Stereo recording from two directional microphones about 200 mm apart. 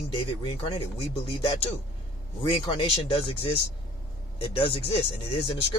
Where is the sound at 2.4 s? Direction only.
25° left (ahead or behind).